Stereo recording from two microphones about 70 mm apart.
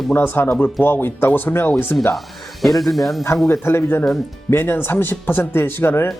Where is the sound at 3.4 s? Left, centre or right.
Left.